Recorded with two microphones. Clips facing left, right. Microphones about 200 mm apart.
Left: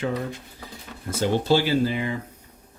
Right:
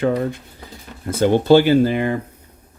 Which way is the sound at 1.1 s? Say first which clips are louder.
Right 8 dB; 55° right (ahead or behind).